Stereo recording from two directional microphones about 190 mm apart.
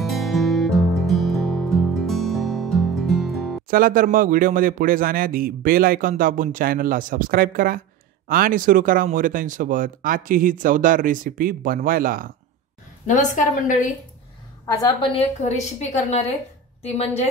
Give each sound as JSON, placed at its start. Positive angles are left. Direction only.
{"t": 0.0, "sound": "music", "side_deg": 0}
{"t": 3.6, "sound": "a man's voice", "side_deg": -50}
{"t": 13.0, "sound": "a woman's voice", "side_deg": 40}
{"t": 14.7, "sound": "a woman's voice", "side_deg": 20}